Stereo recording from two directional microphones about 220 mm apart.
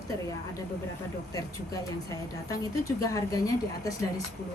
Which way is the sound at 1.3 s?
15° left (ahead or behind).